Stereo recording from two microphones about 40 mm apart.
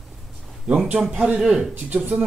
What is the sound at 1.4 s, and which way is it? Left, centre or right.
Speech, centre.